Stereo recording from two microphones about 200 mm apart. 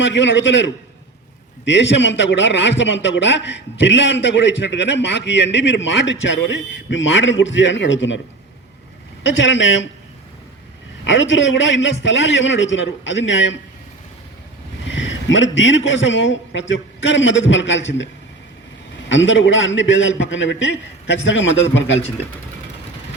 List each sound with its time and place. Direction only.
0.0 s a man's voice: 65° left (ahead or behind)
9.2 s a man's voice: 70° left (ahead or behind)
11.0 s a man's voice: 65° left (ahead or behind)
14.8 s a man's voice: 65° left (ahead or behind)